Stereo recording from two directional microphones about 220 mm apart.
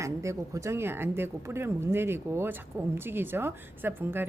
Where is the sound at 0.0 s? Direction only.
15° right (ahead or behind).